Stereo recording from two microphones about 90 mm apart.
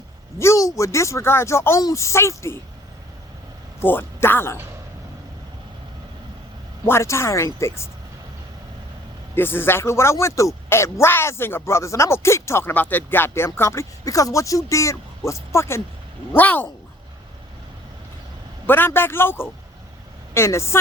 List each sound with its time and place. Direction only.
0.3 s speech: 35° left (ahead or behind)
3.8 s a man's voice: 25° left (ahead or behind)
6.8 s speech: 30° left (ahead or behind)
9.3 s speech: 25° left (ahead or behind)
16.3 s a man's voice: 20° left (ahead or behind)
18.6 s a man's voice: 25° left (ahead or behind)